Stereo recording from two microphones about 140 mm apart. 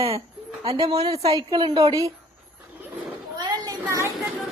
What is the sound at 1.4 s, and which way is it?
Speech, 30° right (ahead or behind).